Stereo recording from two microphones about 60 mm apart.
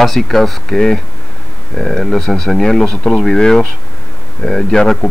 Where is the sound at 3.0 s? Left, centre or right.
Left.